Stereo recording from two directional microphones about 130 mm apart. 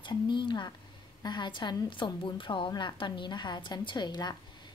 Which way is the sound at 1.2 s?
35° left (ahead or behind).